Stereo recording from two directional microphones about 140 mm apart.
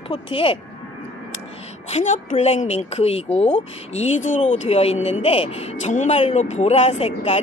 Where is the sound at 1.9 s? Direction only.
60° left (ahead or behind).